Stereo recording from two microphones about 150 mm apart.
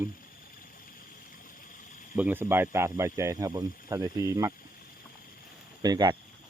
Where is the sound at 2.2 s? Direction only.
10° right (ahead or behind).